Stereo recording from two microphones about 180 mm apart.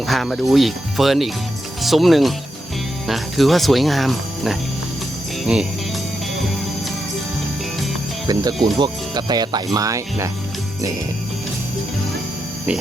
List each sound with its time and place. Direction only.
0.0 s speech: centre (ahead or behind)
8.3 s speech: 20° right (ahead or behind)